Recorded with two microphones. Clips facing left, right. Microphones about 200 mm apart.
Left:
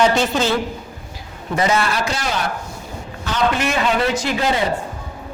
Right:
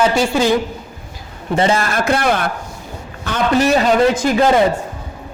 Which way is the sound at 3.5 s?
35° right (ahead or behind).